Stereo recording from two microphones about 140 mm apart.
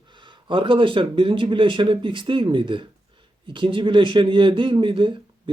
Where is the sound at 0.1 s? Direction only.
35° right (ahead or behind).